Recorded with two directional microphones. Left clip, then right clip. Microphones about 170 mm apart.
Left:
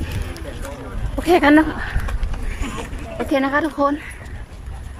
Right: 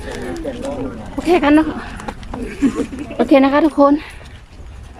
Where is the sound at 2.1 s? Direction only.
60° right (ahead or behind).